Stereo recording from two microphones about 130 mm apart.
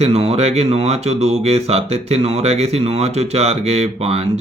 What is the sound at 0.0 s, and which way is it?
Speech, 55° right (ahead or behind).